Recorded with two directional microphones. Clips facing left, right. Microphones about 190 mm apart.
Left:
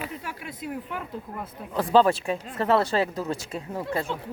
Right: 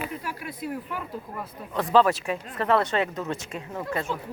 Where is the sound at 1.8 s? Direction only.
30° left (ahead or behind).